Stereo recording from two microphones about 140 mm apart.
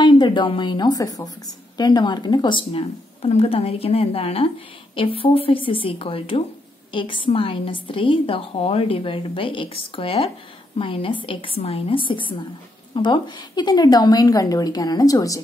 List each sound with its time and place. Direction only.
0.0 s a woman's voice: 35° left (ahead or behind)